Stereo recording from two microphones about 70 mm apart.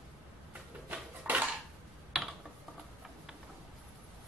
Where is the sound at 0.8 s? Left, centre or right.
Right.